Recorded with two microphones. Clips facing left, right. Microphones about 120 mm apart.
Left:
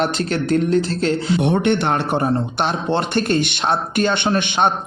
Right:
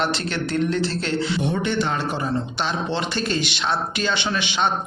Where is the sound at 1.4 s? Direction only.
65° left (ahead or behind).